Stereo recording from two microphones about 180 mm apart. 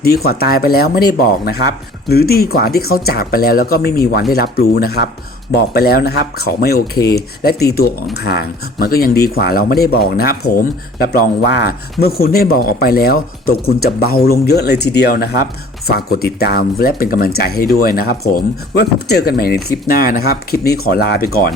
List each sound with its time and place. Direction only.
0.0 s speech: 60° left (ahead or behind)